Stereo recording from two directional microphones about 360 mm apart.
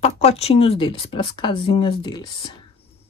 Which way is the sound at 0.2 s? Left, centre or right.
Centre.